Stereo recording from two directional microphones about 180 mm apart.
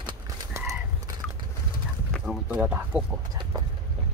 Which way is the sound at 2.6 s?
10° right (ahead or behind).